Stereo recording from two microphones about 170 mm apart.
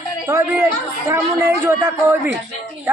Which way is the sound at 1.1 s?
15° right (ahead or behind).